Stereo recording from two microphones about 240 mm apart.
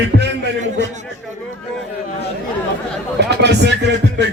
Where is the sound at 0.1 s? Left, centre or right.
Right.